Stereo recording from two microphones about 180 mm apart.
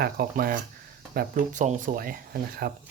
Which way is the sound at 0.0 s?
55° right (ahead or behind).